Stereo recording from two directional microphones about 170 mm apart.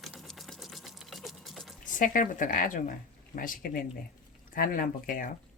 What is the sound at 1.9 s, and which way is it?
Speech, 50° left (ahead or behind).